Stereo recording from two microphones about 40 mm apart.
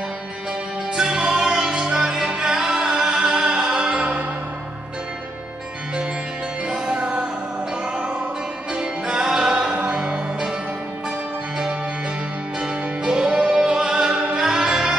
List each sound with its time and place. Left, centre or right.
0.9 s music: centre
6.7 s music: right
12.5 s music: centre